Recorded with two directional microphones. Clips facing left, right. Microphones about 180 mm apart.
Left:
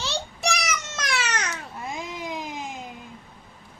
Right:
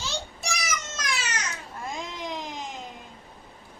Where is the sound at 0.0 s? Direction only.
70° left (ahead or behind).